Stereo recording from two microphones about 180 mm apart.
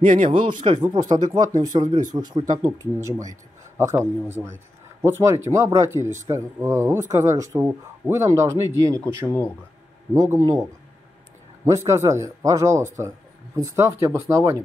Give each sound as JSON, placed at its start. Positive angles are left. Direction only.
{"t": 0.0, "sound": "speech", "side_deg": -25}
{"t": 10.1, "sound": "speech", "side_deg": -20}
{"t": 11.6, "sound": "speech", "side_deg": -15}